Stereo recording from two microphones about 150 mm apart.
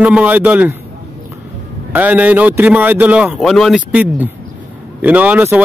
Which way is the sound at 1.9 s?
10° right (ahead or behind).